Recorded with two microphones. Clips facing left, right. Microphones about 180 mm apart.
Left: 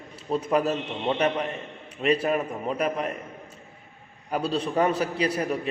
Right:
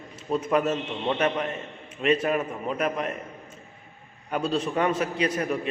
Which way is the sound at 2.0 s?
35° left (ahead or behind).